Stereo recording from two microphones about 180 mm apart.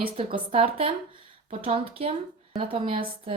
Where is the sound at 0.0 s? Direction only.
30° right (ahead or behind).